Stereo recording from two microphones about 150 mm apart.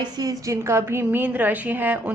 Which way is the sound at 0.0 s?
25° right (ahead or behind).